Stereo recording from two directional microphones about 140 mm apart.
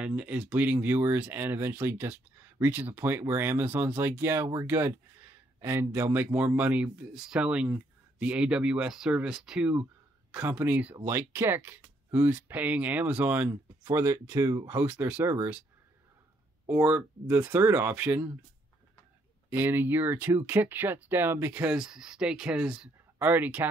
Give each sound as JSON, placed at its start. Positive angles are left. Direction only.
{"t": 0.0, "sound": "speech", "side_deg": -10}
{"t": 13.8, "sound": "speech", "side_deg": -25}
{"t": 16.6, "sound": "speech", "side_deg": -15}
{"t": 19.5, "sound": "speech", "side_deg": -15}